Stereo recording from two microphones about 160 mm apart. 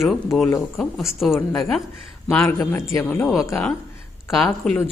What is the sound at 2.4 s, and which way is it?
Speech, 20° left (ahead or behind).